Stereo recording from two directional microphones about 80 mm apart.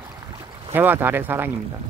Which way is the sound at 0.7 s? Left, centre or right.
Right.